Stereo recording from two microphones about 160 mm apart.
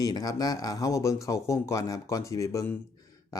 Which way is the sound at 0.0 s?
20° left (ahead or behind).